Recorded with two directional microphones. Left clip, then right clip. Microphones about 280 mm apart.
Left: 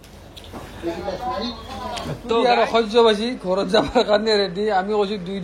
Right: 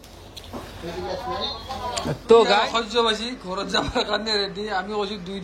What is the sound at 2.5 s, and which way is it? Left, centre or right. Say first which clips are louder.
A man's voice: left 4 dB; centre.